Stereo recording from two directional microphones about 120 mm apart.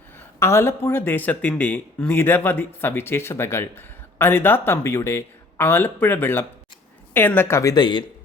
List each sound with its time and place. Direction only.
0.3 s speech: 20° left (ahead or behind); by 8.0 s 35° left (ahead or behind)